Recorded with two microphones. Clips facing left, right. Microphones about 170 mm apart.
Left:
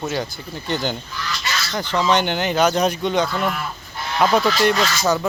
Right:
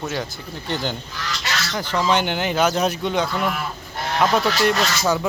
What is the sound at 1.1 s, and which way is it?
Goose, 80° right.